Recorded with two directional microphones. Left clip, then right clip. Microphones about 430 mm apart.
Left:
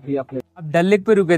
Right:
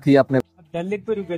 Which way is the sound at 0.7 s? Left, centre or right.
Left.